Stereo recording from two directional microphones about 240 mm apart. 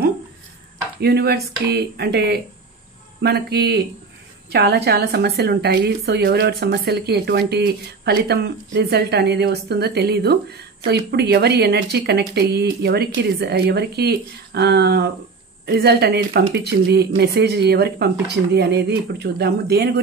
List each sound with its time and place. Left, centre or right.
1.0 s a woman's voice: right